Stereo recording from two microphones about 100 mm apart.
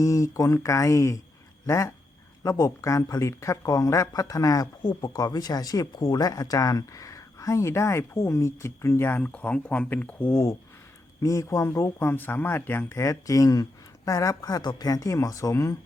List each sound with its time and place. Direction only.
0.0 s speech: 35° left (ahead or behind)
11.2 s speech: 35° left (ahead or behind)